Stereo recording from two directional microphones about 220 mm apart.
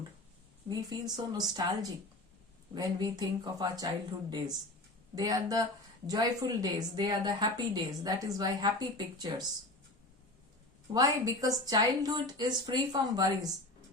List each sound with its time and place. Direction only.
0.7 s a woman's voice: 20° right (ahead or behind)
10.9 s a woman's voice: 15° right (ahead or behind)